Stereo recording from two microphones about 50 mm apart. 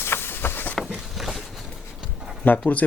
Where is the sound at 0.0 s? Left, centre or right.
Left.